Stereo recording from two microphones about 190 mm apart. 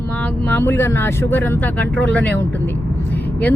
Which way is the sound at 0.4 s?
10° left (ahead or behind).